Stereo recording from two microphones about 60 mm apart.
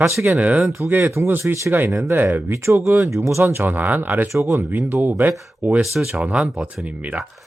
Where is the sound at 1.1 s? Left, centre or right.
Right.